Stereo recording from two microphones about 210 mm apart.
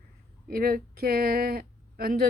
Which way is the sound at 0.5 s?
45° right (ahead or behind).